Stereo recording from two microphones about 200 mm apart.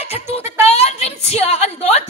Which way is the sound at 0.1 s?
30° left (ahead or behind).